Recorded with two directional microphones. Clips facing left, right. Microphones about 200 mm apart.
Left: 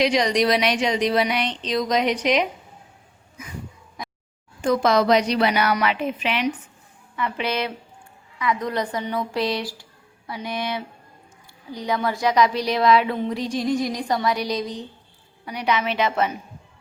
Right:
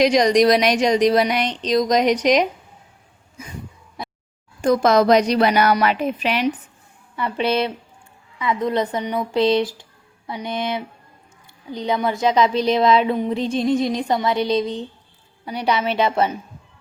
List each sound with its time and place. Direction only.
0.0 s speech: 45° right (ahead or behind)
4.6 s a woman's voice: 45° right (ahead or behind); by 7.7 s 30° right (ahead or behind)
8.4 s a sound: 25° right (ahead or behind)
15.4 s a woman's voice: 30° right (ahead or behind)